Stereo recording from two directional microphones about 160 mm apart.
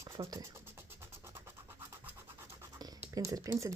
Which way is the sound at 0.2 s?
30° right (ahead or behind).